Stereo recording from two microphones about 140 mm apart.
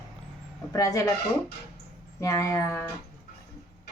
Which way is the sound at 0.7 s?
25° left (ahead or behind).